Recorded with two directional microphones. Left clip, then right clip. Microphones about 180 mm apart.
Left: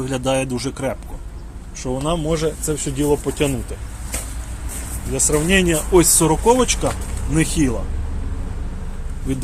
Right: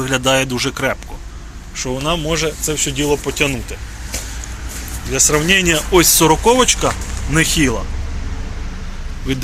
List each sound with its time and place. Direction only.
0.0 s speech: centre (ahead or behind)
1.7 s speech: 15° left (ahead or behind)
5.1 s speech: 5° left (ahead or behind)